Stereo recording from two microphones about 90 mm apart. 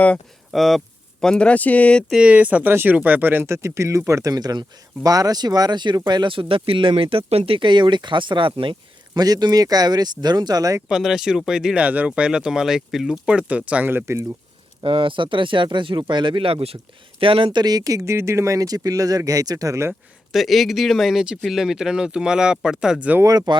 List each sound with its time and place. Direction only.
0.5 s speech: centre (ahead or behind)
2.0 s speech: 10° right (ahead or behind); by 6.3 s 55° right (ahead or behind)
6.3 s speech: 80° right
9.1 s speech: 45° right (ahead or behind)
10.8 s speech: 5° right (ahead or behind)
14.0 s speech: 30° right (ahead or behind)
14.8 s speech: 70° right (ahead or behind); by 16.7 s 90° right
17.2 s speech: 75° right (ahead or behind); by 19.9 s 35° right (ahead or behind)
19.9 s speech: centre (ahead or behind)
23.5 s speech: 55° right (ahead or behind)